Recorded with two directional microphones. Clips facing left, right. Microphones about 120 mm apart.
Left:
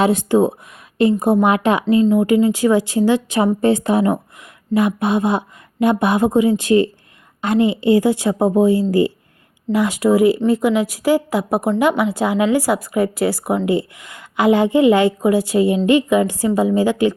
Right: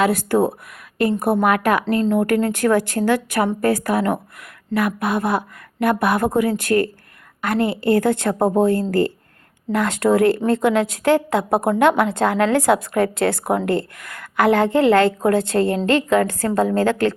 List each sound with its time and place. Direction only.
0.0 s speech: 20° left (ahead or behind)
2.0 s a woman's voice: 10° left (ahead or behind)